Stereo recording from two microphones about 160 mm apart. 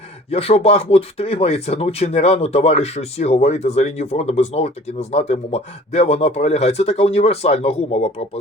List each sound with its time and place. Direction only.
0.3 s speech: 40° left (ahead or behind)